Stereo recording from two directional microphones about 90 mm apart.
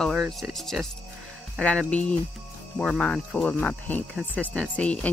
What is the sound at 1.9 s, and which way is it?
Speech, 15° left (ahead or behind).